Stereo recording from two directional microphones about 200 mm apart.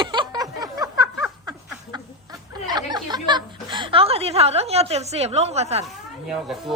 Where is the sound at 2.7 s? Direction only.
20° right (ahead or behind).